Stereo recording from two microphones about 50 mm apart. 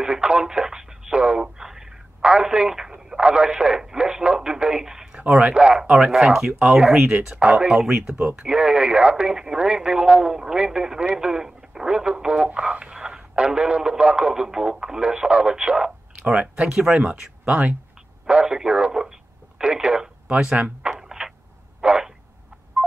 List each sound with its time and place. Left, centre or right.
0.0 s radio: centre
2.3 s speech: centre
5.3 s speech: right
5.8 s speech: centre
7.7 s speech: centre
18.2 s speech: centre
20.9 s a sound: centre
21.8 s a sound: right